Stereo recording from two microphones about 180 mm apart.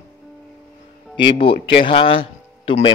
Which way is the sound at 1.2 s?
30° left (ahead or behind).